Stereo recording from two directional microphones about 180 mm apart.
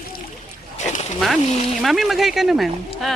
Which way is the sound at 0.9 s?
40° left (ahead or behind).